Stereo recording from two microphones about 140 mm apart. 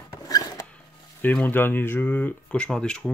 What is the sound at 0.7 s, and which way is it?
Speech, 10° left (ahead or behind).